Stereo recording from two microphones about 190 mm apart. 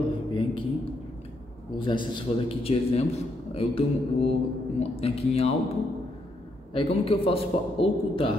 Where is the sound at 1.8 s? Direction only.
25° left (ahead or behind).